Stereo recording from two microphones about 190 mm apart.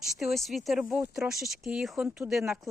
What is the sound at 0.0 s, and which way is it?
Speech, centre (ahead or behind).